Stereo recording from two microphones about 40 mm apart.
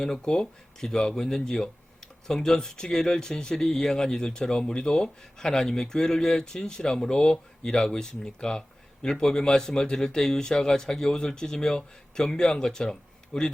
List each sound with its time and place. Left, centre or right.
0.0 s speech: centre